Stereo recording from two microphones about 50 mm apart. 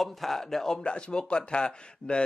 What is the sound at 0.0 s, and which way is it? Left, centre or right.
Speech, centre.